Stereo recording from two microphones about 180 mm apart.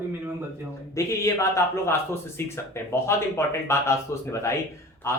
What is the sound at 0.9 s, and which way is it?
Speech, 15° left (ahead or behind).